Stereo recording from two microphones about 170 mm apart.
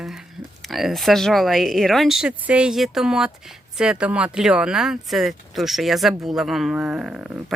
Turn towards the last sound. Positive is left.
turn(degrees=-5)  # may be behind; listen again after turning